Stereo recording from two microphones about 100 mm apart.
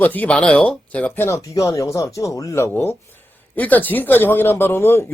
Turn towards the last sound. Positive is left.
turn(degrees=25)  # may be behind; listen again after turning